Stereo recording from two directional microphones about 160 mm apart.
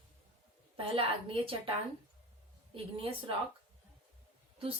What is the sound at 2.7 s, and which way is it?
Speech, 35° right (ahead or behind).